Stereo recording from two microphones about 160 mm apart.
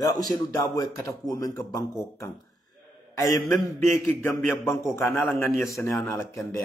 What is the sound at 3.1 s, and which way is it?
Speech, 20° left (ahead or behind).